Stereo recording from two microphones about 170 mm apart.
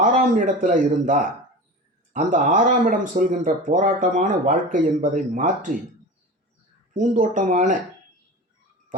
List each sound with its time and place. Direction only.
0.0 s a man's voice: 50° right (ahead or behind)
6.9 s speech: 50° right (ahead or behind)